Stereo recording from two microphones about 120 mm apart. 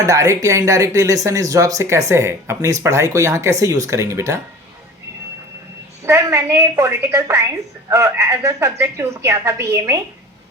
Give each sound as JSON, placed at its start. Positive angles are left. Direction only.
{"t": 0.0, "sound": "speech", "side_deg": -30}
{"t": 6.1, "sound": "speech", "side_deg": -25}